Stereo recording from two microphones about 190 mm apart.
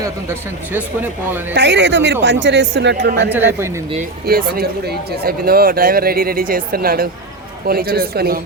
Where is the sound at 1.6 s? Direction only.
65° right (ahead or behind).